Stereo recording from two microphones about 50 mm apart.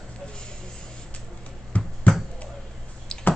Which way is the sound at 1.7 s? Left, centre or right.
Left.